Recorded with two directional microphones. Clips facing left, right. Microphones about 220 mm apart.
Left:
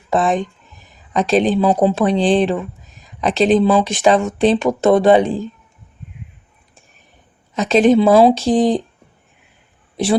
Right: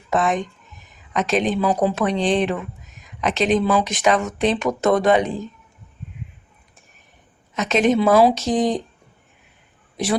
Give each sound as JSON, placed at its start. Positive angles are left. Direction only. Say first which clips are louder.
{"t": 0.1, "sound": "speech", "louder": "left 4 dB", "side_deg": 30}
{"t": 7.5, "sound": "speech", "louder": "left 6 dB", "side_deg": 30}
{"t": 10.0, "sound": "a woman's voice", "louder": "left 5 dB", "side_deg": 30}